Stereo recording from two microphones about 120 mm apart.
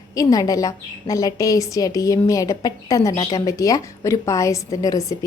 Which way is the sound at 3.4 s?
30° left (ahead or behind).